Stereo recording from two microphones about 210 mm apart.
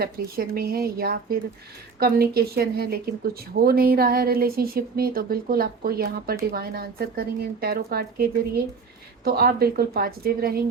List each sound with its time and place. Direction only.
0.0 s a woman's voice: 45° right (ahead or behind)